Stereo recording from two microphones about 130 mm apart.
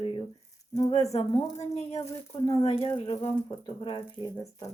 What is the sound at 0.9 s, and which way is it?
A woman's voice, 55° left (ahead or behind).